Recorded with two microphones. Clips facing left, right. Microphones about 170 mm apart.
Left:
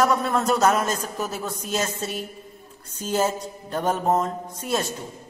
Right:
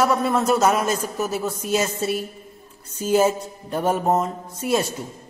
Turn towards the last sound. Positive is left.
turn(degrees=-10)  # may be behind; listen again after turning